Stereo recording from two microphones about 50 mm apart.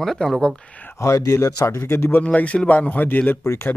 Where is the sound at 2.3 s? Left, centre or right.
Left.